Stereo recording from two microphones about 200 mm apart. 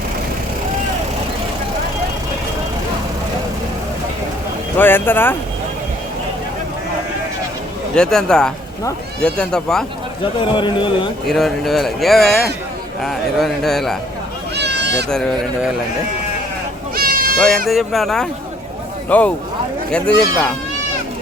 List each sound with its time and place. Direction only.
4.8 s speech: 10° left (ahead or behind)
7.9 s speech: 5° left (ahead or behind)
10.4 s speech: 25° left (ahead or behind)
11.3 s speech: centre (ahead or behind)
14.5 s bleat: 55° right (ahead or behind)
16.9 s goat: 45° right (ahead or behind)
17.7 s speech: centre (ahead or behind)